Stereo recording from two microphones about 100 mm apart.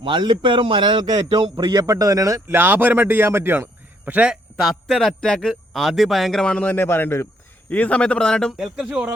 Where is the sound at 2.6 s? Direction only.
20° right (ahead or behind).